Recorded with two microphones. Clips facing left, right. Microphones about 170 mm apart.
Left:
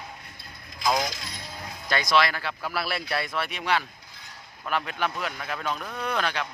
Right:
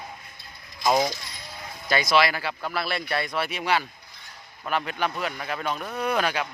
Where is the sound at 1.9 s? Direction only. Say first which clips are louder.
Right 2 dB; 5° right (ahead or behind).